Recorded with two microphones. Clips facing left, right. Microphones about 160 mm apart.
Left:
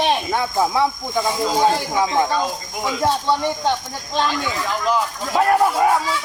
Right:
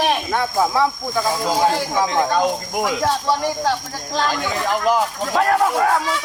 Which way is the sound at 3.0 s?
25° left (ahead or behind).